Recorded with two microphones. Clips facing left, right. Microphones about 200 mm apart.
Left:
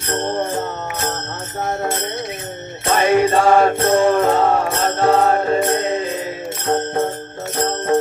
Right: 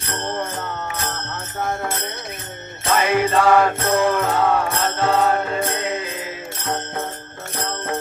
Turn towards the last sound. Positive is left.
turn(degrees=40)  # may be behind; listen again after turning